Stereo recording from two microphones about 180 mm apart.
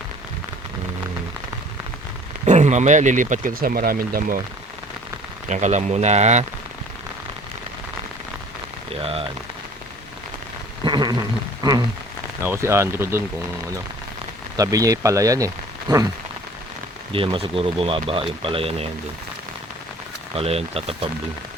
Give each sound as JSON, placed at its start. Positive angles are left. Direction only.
{"t": 2.5, "sound": "speech", "side_deg": -40}
{"t": 5.5, "sound": "speech", "side_deg": -40}
{"t": 8.9, "sound": "speech", "side_deg": -30}
{"t": 10.8, "sound": "speech", "side_deg": -25}
{"t": 12.5, "sound": "speech", "side_deg": -15}
{"t": 14.5, "sound": "speech", "side_deg": -20}
{"t": 17.1, "sound": "speech", "side_deg": -30}
{"t": 20.3, "sound": "speech", "side_deg": -35}